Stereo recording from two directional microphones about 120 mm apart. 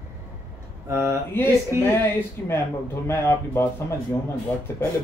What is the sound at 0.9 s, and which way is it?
Speech, 25° right (ahead or behind).